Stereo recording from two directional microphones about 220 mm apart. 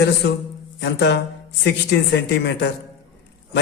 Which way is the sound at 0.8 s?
50° left (ahead or behind).